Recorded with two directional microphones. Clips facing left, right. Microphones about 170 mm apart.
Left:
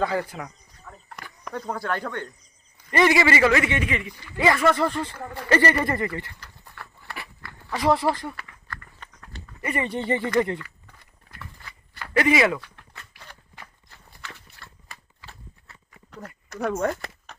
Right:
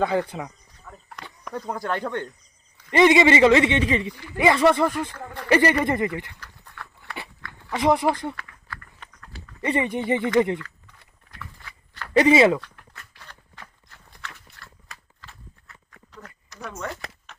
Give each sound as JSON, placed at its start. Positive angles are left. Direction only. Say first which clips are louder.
{"t": 0.0, "sound": "a man's voice", "louder": "right 2 dB", "side_deg": -20}
{"t": 1.2, "sound": "a sound", "louder": "right 2 dB", "side_deg": 10}
{"t": 1.5, "sound": "a man's voice", "louder": "right 1 dB", "side_deg": -15}
{"t": 4.4, "sound": "a man's voice", "louder": "right 2 dB", "side_deg": -20}
{"t": 7.7, "sound": "a man's voice", "louder": "right 1 dB", "side_deg": -20}
{"t": 8.4, "sound": "a sound", "louder": "even", "side_deg": -5}
{"t": 9.6, "sound": "speech", "louder": "right 4 dB", "side_deg": -30}
{"t": 9.8, "sound": "speech", "louder": "right 2 dB", "side_deg": -15}
{"t": 12.1, "sound": "a man's voice", "louder": "right 4 dB", "side_deg": -25}
{"t": 15.3, "sound": "walk", "louder": "left 3 dB", "side_deg": 30}
{"t": 16.0, "sound": "a sound", "louder": "left 5 dB", "side_deg": 55}
{"t": 17.3, "sound": "a sound", "louder": "left 2 dB", "side_deg": 40}